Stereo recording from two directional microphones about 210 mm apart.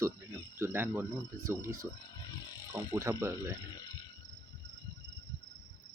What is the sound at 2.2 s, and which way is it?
Wild animals, 20° left (ahead or behind).